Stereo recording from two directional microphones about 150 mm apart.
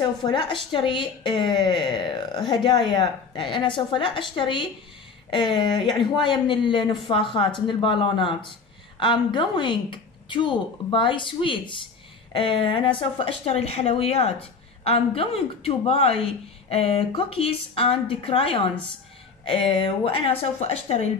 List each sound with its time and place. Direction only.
0.2 s a woman's voice: 30° left (ahead or behind)
13.5 s a woman's voice: 45° left (ahead or behind)